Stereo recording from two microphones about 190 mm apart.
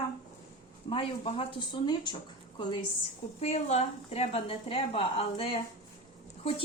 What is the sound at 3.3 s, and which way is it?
A woman's voice, 35° left (ahead or behind).